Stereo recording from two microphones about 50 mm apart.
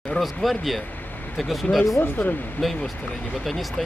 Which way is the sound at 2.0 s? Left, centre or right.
Left.